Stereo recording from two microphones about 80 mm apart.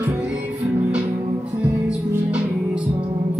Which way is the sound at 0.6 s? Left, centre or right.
Right.